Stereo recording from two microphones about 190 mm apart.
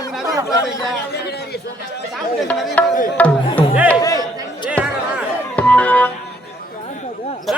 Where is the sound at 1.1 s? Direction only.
60° left (ahead or behind).